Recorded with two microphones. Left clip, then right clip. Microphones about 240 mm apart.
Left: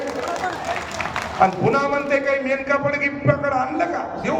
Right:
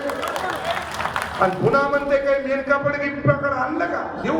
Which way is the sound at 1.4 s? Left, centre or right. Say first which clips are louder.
Left 1 dB; left.